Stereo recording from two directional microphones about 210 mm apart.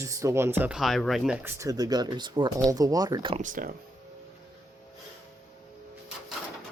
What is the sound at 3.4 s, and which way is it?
Speech, 40° right (ahead or behind).